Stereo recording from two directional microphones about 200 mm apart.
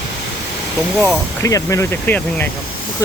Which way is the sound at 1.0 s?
15° left (ahead or behind).